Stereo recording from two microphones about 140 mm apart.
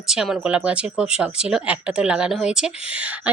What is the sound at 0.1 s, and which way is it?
Speech, 5° right (ahead or behind).